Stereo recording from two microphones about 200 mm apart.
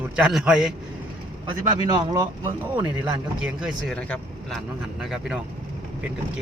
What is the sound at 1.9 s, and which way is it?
Speech, 20° right (ahead or behind).